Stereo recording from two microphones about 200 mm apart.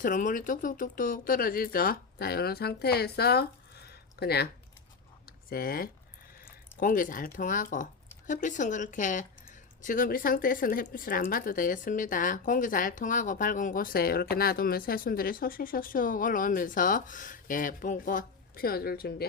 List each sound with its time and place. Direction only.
0.0 s speech: 40° left (ahead or behind)
3.8 s a sound: 55° left (ahead or behind)
5.5 s speech: 50° left (ahead or behind)